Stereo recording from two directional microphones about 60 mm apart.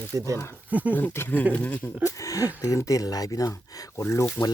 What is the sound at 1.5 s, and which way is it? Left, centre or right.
Speech, left.